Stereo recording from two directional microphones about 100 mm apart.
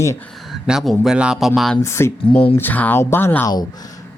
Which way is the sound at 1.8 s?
25° left (ahead or behind).